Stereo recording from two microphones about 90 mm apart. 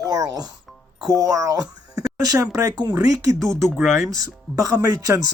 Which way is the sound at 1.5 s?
40° right (ahead or behind).